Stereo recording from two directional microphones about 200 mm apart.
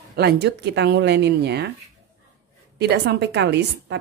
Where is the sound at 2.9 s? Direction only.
60° right (ahead or behind).